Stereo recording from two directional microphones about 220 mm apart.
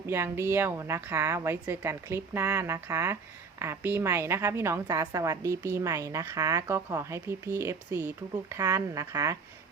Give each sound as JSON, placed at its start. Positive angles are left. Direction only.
{"t": 0.1, "sound": "a woman's voice", "side_deg": -10}